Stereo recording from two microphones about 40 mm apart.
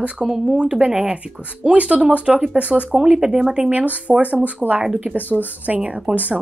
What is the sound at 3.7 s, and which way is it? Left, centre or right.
Speech, right.